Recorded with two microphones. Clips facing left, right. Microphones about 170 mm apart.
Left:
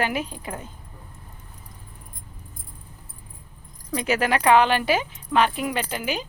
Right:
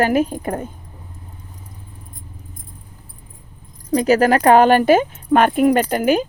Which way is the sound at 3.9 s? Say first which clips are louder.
Right 9 dB; 40° right (ahead or behind).